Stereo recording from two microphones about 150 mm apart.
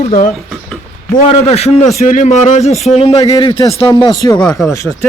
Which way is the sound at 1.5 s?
45° left (ahead or behind).